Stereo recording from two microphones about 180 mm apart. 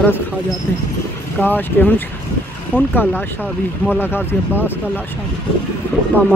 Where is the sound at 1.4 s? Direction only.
10° left (ahead or behind).